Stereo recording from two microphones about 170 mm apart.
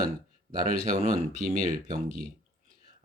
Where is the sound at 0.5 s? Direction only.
50° right (ahead or behind).